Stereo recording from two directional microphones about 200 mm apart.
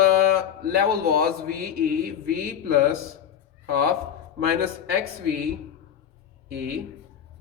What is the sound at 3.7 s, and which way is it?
Speech, 50° right (ahead or behind).